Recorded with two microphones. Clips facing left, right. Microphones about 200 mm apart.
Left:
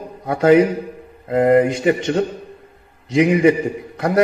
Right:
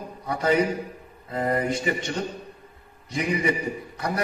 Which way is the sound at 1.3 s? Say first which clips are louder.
Left 12 dB; 75° left (ahead or behind).